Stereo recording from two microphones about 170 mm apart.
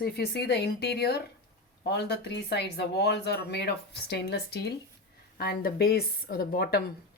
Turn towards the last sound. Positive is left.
turn(degrees=65)  # may be behind; listen again after turning